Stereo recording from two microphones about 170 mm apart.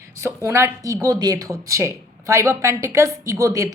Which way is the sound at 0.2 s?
15° right (ahead or behind).